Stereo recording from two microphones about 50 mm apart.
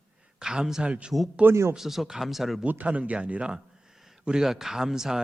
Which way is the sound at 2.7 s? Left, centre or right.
Right.